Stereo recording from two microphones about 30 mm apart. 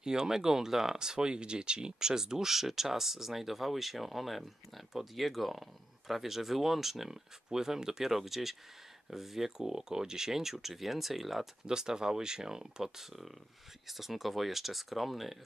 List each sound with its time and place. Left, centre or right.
0.0 s speech: right
9.6 s speech: centre
11.6 s speech: right
13.8 s speech: centre